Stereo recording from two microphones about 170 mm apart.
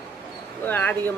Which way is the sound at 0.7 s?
10° left (ahead or behind).